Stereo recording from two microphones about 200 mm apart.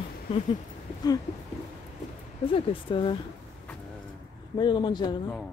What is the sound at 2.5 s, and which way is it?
Speech, 25° left (ahead or behind).